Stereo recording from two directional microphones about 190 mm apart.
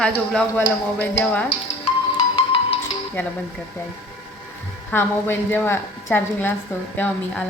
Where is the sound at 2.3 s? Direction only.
25° left (ahead or behind).